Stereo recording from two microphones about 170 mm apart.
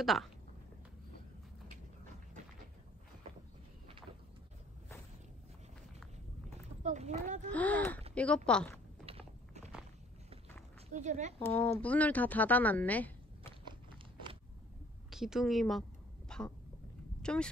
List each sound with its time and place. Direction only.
0.0 s speech: centre (ahead or behind)
6.8 s speech: 40° right (ahead or behind)
7.5 s a woman's voice: 10° left (ahead or behind)
9.0 s a sound: 40° right (ahead or behind)
10.9 s speech: 45° right (ahead or behind)
11.5 s a woman's voice: 10° left (ahead or behind)
13.5 s a sound: 30° right (ahead or behind)
15.0 s a woman's voice: centre (ahead or behind)
16.3 s a sound: 5° left (ahead or behind)